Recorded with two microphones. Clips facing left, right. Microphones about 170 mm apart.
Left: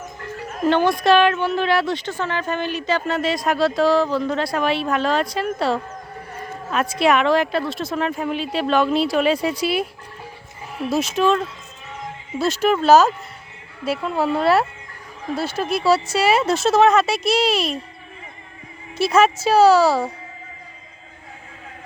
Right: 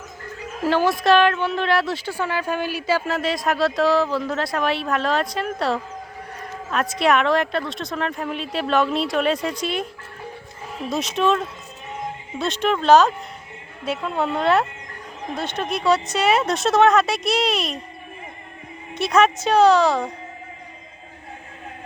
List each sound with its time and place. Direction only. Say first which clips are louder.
0.6 s a woman's voice: left 2 dB; 5° right (ahead or behind)
18.9 s a woman's voice: left 1 dB; 5° left (ahead or behind)